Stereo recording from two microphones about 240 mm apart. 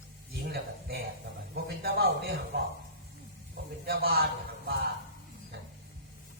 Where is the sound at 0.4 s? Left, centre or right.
Right.